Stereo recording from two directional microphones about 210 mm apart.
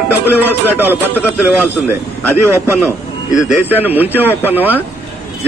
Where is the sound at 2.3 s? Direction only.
10° right (ahead or behind).